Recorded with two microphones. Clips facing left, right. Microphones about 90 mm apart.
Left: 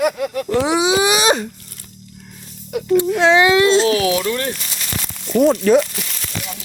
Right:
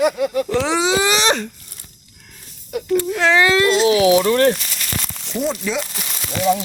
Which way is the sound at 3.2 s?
20° left (ahead or behind).